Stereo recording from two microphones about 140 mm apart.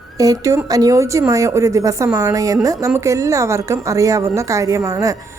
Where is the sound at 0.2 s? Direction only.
25° right (ahead or behind).